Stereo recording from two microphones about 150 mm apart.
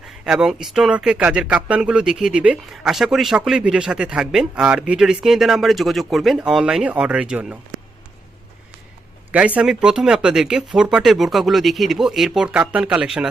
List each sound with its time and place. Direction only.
0.3 s speech: 5° right (ahead or behind)
9.3 s speech: 10° right (ahead or behind)